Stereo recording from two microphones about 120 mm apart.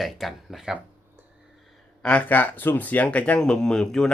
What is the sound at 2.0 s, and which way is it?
Speech, 10° left (ahead or behind).